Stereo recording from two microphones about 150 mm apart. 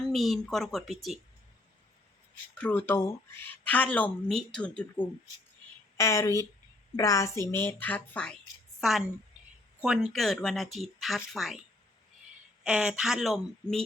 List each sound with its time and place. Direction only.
0.0 s speech: centre (ahead or behind)
2.6 s speech: 10° left (ahead or behind)
6.0 s a woman's voice: 20° left (ahead or behind); by 11.6 s centre (ahead or behind)
12.6 s speech: 5° right (ahead or behind)